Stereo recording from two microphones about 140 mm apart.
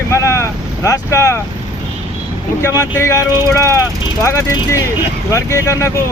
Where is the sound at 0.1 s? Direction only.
20° left (ahead or behind).